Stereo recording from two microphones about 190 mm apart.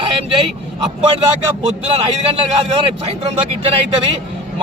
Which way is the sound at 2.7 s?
30° right (ahead or behind).